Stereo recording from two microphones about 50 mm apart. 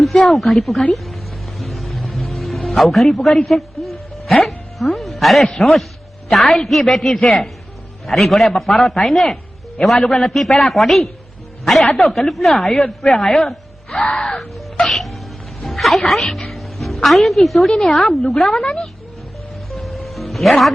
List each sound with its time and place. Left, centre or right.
0.0 s a man's voice: centre
0.9 s music: centre
6.2 s a man's voice: centre
14.1 s music: centre
14.3 s music: centre
17.7 s a man's voice: centre
18.6 s music: centre
19.7 s music: centre